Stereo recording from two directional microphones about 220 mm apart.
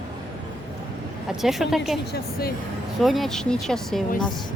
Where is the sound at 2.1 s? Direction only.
45° left (ahead or behind).